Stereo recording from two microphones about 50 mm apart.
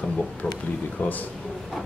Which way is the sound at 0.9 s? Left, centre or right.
Left.